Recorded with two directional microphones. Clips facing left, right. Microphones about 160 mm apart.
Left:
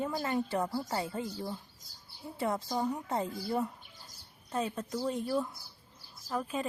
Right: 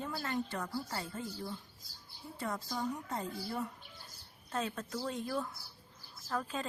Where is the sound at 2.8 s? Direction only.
30° left (ahead or behind).